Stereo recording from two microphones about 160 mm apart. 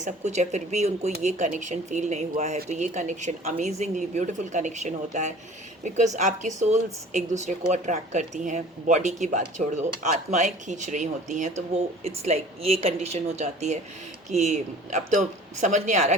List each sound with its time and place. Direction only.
0.0 s speech: 45° right (ahead or behind)